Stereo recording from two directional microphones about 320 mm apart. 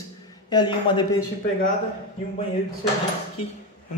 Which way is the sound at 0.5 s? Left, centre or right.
Centre.